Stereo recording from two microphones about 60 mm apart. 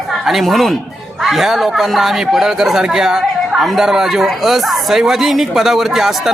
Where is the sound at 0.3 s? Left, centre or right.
Centre.